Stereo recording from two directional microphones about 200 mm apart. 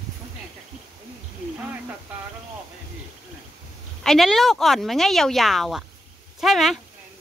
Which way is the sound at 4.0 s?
Centre (ahead or behind).